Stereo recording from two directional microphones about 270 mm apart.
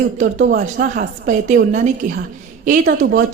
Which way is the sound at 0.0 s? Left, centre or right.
Right.